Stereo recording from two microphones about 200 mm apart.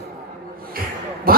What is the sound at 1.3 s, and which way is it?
Speech, 50° right (ahead or behind).